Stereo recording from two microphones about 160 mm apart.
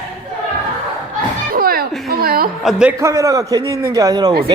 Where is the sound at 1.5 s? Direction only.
70° right (ahead or behind).